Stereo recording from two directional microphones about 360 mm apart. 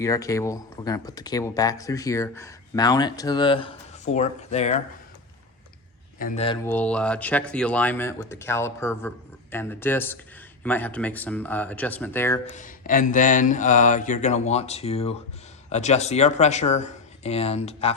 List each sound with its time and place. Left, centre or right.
0.0 s speech: centre
6.1 s speech: left
6.7 s speech: centre
12.5 s mantra: left
15.7 s speech: centre